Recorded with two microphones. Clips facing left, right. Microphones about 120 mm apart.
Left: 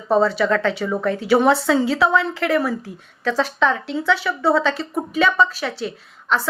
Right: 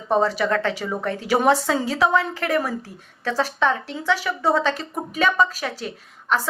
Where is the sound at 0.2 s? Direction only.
35° right (ahead or behind).